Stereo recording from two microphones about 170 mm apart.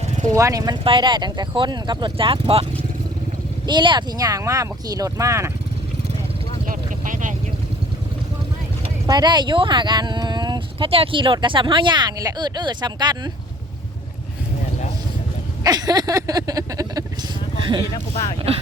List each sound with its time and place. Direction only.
0.3 s speech: 20° right (ahead or behind)
3.7 s speech: 25° right (ahead or behind)
6.7 s vehicle: 50° right (ahead or behind)
9.0 s speech: 25° right (ahead or behind)
15.6 s speech: 25° right (ahead or behind)